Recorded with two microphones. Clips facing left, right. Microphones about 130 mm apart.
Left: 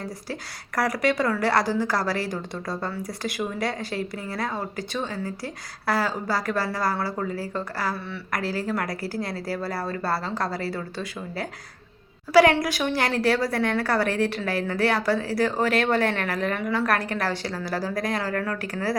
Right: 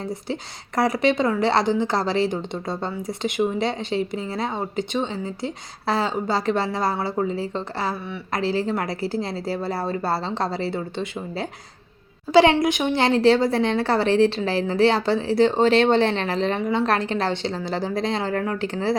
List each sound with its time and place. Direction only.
0.8 s a woman's voice: 25° right (ahead or behind)